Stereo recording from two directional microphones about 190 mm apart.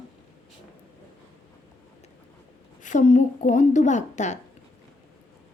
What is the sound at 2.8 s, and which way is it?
A woman's voice, 40° left (ahead or behind).